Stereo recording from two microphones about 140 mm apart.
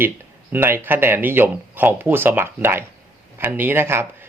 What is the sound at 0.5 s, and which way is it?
Speech, 15° right (ahead or behind).